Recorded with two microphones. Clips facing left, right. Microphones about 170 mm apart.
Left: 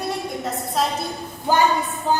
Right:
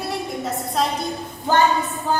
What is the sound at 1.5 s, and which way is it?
Speech, 10° left (ahead or behind).